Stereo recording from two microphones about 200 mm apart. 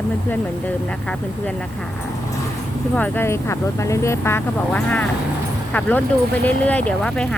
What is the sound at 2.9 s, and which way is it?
Speech, 10° left (ahead or behind).